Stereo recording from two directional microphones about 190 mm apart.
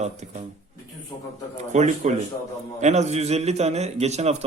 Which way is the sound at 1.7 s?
35° right (ahead or behind).